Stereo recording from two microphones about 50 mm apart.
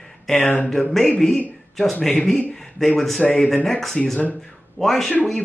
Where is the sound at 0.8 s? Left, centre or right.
Centre.